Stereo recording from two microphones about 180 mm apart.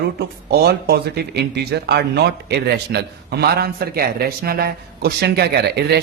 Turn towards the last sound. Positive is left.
turn(degrees=-65)  # may be behind; listen again after turning